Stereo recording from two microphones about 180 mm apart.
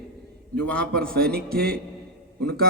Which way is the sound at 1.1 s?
60° right (ahead or behind).